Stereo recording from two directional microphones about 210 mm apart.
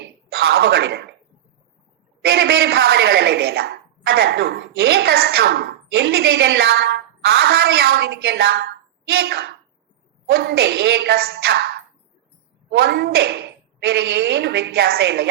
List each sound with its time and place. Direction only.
0.3 s speech: 50° right (ahead or behind)
2.2 s speech: 50° right (ahead or behind)
12.7 s speech: 50° right (ahead or behind)